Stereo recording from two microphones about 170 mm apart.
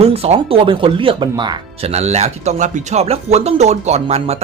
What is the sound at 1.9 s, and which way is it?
Speech, 40° right (ahead or behind).